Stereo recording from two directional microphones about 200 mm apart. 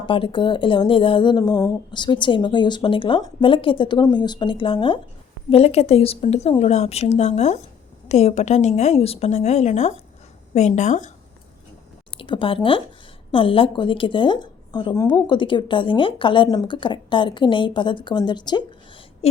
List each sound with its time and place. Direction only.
0.0 s a woman's voice: 25° left (ahead or behind)
12.2 s a woman's voice: 25° left (ahead or behind)